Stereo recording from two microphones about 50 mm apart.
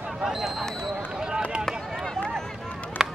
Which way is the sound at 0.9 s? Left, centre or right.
Centre.